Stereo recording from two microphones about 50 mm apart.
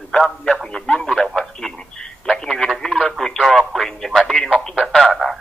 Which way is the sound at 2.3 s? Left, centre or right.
Centre.